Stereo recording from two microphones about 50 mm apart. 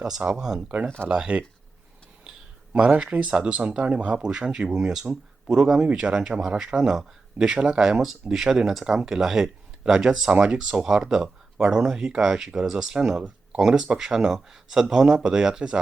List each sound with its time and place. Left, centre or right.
0.0 s speech: centre
1.0 s speech: right
3.0 s speech: right